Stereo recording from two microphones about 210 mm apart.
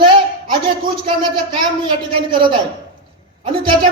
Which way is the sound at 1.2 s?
20° right (ahead or behind).